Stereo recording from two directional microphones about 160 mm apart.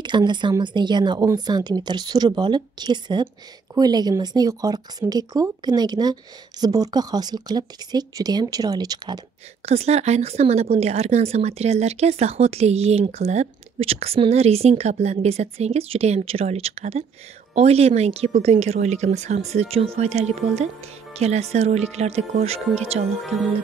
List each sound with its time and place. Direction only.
0.0 s speech: 30° right (ahead or behind)
9.7 s speech: 40° right (ahead or behind)